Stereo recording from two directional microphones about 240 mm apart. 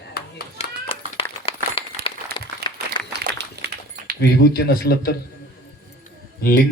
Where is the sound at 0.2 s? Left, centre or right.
Left.